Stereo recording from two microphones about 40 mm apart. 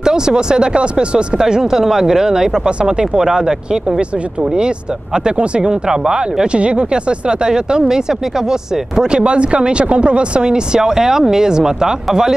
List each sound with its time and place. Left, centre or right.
0.0 s speech: centre